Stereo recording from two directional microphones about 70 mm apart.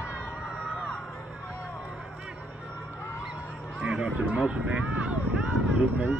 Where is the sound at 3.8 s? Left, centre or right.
Centre.